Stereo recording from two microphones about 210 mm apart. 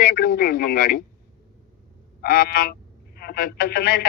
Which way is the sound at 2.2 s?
45° left (ahead or behind).